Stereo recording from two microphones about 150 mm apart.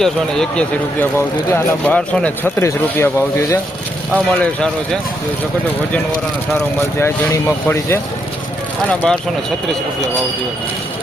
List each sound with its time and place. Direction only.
0.0 s speech: 5° left (ahead or behind)
4.4 s speech: 5° left (ahead or behind)
7.0 s speech: 15° left (ahead or behind)
9.0 s speech: 5° left (ahead or behind)